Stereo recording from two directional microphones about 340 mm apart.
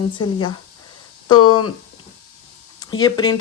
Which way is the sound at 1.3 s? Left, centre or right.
Left.